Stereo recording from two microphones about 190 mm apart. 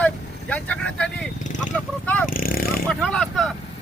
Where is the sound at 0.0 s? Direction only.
5° left (ahead or behind).